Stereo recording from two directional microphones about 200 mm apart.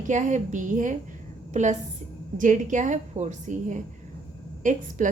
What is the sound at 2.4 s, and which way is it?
A woman's voice, 40° right (ahead or behind).